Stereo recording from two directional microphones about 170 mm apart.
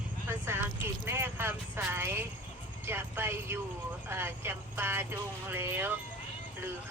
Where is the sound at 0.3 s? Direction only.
15° right (ahead or behind).